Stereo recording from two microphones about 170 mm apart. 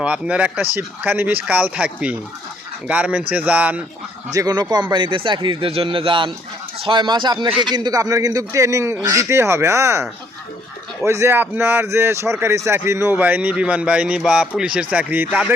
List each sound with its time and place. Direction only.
0.0 s speech: 10° right (ahead or behind)
4.3 s a man's voice: 20° right (ahead or behind)